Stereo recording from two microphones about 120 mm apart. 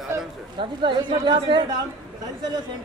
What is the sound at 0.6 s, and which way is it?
A woman's voice, 45° right (ahead or behind).